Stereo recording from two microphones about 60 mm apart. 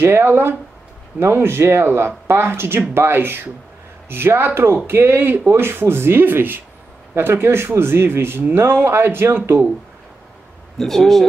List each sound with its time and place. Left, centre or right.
0.0 s speech: right
10.8 s speech: centre